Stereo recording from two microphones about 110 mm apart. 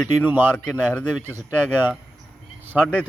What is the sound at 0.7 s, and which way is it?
Speech, 15° left (ahead or behind).